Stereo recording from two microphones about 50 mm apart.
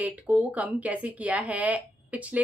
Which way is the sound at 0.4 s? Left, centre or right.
Right.